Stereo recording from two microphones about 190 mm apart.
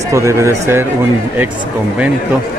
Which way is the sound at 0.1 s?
15° right (ahead or behind).